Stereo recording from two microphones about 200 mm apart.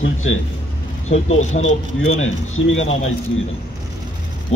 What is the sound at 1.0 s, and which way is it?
Speech, 35° left (ahead or behind).